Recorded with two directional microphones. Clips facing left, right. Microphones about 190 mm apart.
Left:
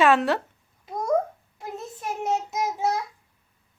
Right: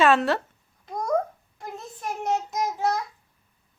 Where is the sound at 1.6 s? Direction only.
5° left (ahead or behind).